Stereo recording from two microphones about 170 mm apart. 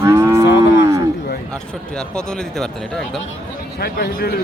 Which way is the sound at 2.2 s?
5° left (ahead or behind).